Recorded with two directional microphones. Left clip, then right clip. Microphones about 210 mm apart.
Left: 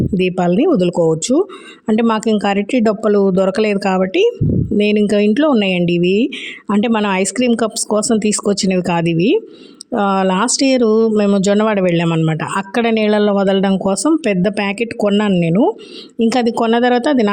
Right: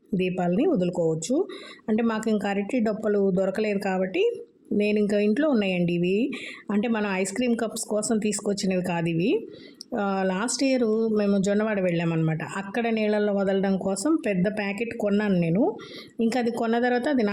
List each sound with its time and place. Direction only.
0.1 s speech: 40° left (ahead or behind)